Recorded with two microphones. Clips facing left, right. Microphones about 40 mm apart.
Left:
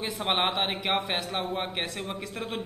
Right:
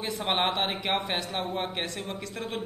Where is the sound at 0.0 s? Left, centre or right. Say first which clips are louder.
Even; centre.